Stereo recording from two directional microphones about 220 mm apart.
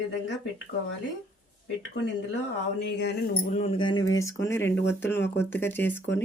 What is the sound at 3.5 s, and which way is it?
Speech, 30° left (ahead or behind).